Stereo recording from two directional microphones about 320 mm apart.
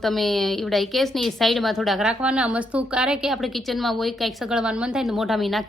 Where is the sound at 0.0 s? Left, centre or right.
Centre.